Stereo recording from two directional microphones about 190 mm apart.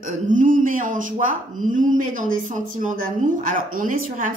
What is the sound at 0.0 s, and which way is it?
Speech, 45° right (ahead or behind).